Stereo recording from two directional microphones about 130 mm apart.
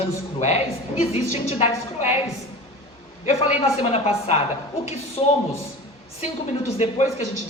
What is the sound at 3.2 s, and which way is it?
A woman's voice, 55° left (ahead or behind).